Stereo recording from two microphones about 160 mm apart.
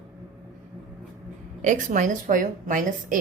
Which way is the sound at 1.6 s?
50° right (ahead or behind).